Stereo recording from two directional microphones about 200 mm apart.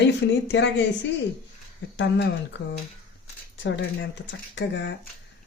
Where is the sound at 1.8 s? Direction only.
65° left (ahead or behind).